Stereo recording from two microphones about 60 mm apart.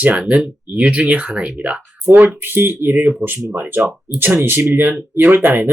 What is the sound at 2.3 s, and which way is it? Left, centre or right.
Speech, right.